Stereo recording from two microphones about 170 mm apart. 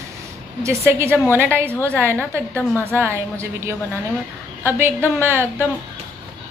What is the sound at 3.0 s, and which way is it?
Speech, 15° right (ahead or behind).